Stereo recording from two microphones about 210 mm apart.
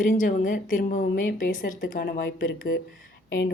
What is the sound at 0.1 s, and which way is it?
A woman's voice, 40° left (ahead or behind).